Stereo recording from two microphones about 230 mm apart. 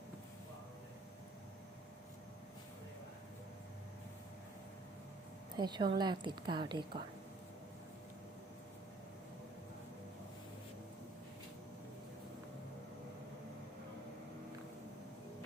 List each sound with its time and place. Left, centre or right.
5.5 s a woman's voice: centre